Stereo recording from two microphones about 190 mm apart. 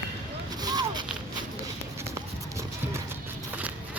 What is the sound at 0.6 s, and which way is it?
Speech, 20° right (ahead or behind).